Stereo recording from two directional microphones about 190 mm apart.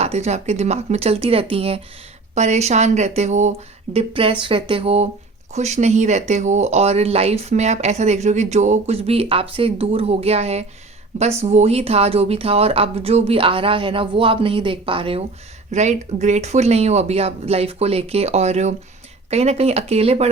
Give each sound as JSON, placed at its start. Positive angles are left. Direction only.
{"t": 0.0, "sound": "speech", "side_deg": -35}